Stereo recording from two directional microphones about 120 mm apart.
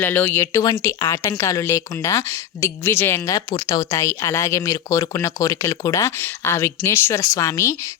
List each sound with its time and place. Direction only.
0.0 s speech: 15° left (ahead or behind)
0.6 s speech: 30° left (ahead or behind)